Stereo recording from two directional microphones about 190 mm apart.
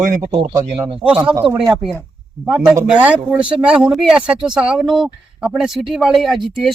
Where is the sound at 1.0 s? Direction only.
5° right (ahead or behind).